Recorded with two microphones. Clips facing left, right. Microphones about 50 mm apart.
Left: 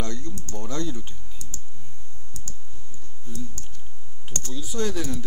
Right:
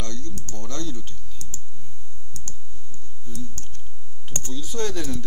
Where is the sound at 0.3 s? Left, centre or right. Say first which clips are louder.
Left 1 dB; right.